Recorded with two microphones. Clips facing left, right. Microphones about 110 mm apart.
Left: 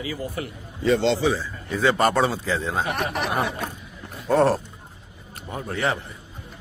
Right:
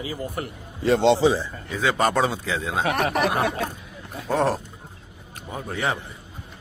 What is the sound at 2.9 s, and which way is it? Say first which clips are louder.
Speech: right 4 dB; 60° right (ahead or behind).